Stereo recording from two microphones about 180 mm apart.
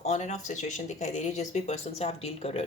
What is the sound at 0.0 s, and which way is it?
Speech, 40° left (ahead or behind).